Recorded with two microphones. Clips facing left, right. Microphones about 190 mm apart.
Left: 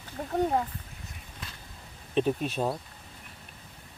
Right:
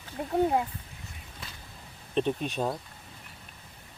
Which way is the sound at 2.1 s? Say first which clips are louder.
Left 1 dB; 5° left (ahead or behind).